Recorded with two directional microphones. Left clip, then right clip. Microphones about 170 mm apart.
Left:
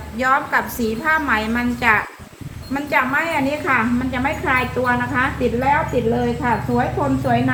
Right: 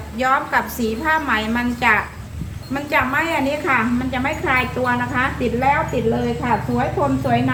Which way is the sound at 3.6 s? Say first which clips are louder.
Even; 20° right (ahead or behind).